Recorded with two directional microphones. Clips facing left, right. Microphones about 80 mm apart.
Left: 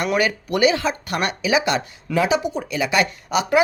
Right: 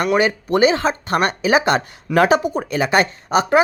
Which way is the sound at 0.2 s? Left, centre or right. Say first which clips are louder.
Right 3 dB; right.